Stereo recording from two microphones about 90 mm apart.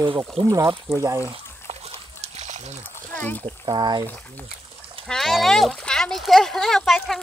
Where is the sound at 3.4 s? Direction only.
60° right (ahead or behind).